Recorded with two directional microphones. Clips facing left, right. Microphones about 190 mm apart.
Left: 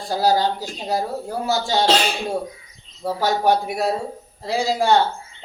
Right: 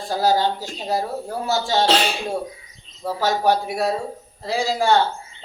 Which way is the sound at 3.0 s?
15° left (ahead or behind).